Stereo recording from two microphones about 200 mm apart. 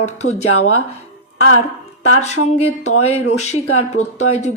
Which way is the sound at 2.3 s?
35° left (ahead or behind).